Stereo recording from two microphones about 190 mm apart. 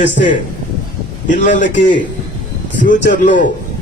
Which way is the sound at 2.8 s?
45° left (ahead or behind).